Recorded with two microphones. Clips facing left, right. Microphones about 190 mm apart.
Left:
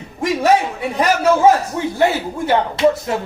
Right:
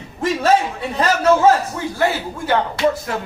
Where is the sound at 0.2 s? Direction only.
15° left (ahead or behind).